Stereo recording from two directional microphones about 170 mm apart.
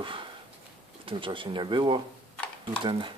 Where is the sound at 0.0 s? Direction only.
30° right (ahead or behind).